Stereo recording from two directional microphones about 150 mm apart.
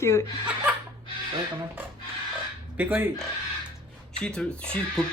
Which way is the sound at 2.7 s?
10° right (ahead or behind).